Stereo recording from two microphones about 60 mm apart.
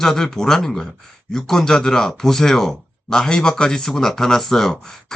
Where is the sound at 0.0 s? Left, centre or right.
Centre.